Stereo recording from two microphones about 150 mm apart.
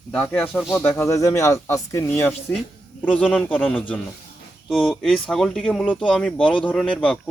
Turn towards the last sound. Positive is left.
turn(degrees=5)  # may be behind; listen again after turning